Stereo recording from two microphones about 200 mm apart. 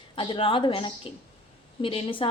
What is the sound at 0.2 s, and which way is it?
A woman's voice, 25° left (ahead or behind).